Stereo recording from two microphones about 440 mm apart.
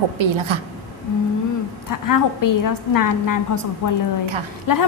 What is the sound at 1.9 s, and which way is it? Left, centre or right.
A woman's voice, left.